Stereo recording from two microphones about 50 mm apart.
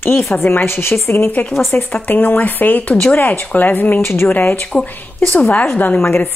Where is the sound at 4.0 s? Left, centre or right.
Left.